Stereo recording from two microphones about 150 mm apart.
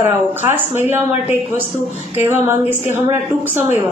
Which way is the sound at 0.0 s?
15° right (ahead or behind).